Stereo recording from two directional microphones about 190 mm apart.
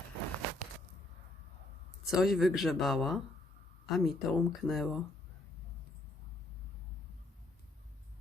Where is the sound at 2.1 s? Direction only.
Centre (ahead or behind).